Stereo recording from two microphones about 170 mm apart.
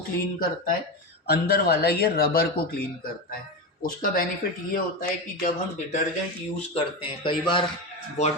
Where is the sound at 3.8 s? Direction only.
55° left (ahead or behind).